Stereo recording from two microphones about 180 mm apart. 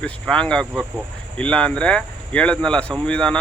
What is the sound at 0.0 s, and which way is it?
Speech, 5° left (ahead or behind).